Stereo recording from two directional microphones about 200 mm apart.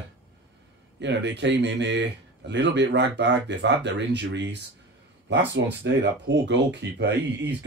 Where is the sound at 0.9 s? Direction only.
60° right (ahead or behind).